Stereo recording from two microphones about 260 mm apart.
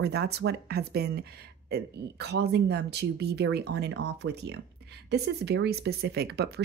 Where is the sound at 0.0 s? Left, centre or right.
Right.